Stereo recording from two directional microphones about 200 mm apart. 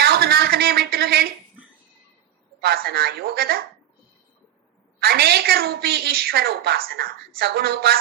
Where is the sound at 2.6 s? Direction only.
50° right (ahead or behind).